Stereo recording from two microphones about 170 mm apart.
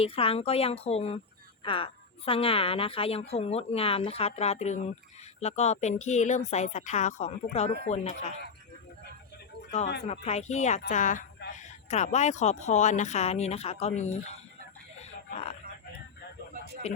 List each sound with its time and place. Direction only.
0.0 s a woman's voice: 35° left (ahead or behind)
10.1 s speech: 40° left (ahead or behind)
16.8 s speech: 40° left (ahead or behind)